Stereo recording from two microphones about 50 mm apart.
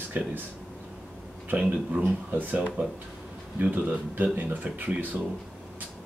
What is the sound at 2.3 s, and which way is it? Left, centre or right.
Speech, right.